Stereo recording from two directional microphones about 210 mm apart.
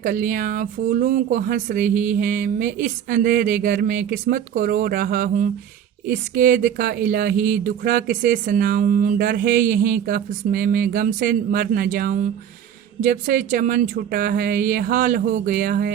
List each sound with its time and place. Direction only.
0.0 s speech: 40° right (ahead or behind)